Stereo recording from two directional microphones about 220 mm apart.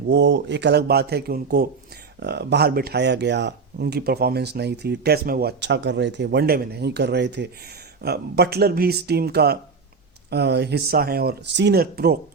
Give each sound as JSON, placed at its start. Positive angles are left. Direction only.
{"t": 0.1, "sound": "speech", "side_deg": -50}